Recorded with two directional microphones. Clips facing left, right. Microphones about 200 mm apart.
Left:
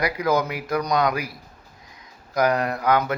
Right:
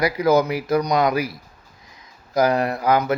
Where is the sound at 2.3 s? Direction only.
25° right (ahead or behind).